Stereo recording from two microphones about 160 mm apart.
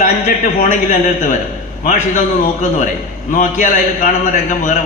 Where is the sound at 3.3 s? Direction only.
55° left (ahead or behind).